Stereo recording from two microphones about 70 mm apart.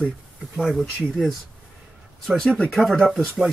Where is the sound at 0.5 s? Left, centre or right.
Centre.